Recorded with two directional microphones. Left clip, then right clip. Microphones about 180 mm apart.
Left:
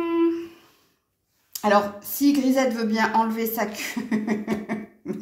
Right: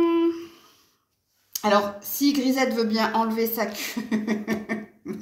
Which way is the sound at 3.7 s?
35° left (ahead or behind).